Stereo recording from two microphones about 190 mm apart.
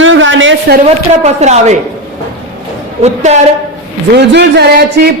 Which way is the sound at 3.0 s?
35° right (ahead or behind).